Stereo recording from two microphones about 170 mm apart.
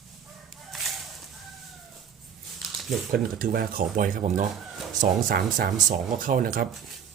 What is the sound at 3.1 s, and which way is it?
Speech, 60° right (ahead or behind).